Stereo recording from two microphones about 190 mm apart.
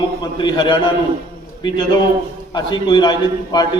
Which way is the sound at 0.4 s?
25° left (ahead or behind).